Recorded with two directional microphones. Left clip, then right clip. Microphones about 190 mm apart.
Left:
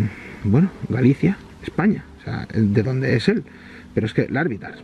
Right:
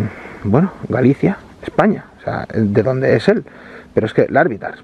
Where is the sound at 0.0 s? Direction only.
25° right (ahead or behind).